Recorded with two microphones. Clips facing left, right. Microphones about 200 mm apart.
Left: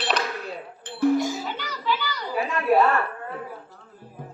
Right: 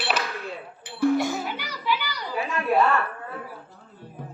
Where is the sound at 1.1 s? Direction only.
60° right (ahead or behind).